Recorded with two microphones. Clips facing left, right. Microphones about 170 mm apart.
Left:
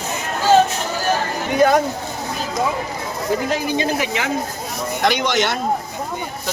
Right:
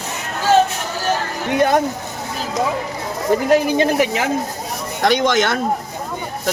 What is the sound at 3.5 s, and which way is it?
Speech, 45° right (ahead or behind).